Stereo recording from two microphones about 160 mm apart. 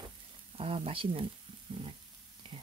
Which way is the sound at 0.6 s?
35° right (ahead or behind).